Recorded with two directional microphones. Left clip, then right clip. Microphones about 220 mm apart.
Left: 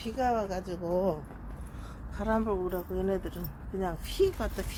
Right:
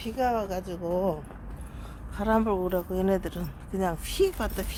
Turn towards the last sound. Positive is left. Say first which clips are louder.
# right 2 dB
turn(degrees=-25)  # may be behind; listen again after turning